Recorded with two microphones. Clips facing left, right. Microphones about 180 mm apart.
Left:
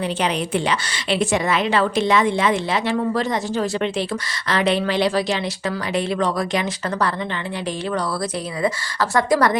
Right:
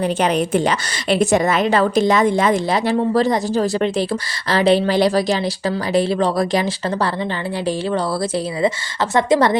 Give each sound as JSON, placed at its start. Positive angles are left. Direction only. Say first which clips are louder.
{"t": 0.0, "sound": "a woman's voice", "louder": "right 5 dB", "side_deg": -45}
{"t": 8.6, "sound": "a woman's voice", "louder": "left 1 dB", "side_deg": -25}